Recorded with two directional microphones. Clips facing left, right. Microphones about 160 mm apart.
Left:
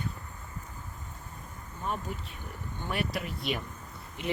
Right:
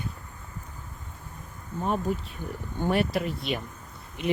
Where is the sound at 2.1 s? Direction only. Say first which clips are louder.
Right 9 dB; 40° right (ahead or behind).